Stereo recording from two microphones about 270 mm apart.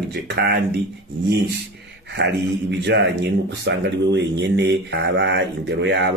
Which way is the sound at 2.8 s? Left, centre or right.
Right.